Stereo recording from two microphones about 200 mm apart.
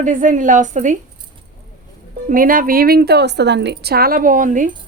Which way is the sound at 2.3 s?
45° right (ahead or behind).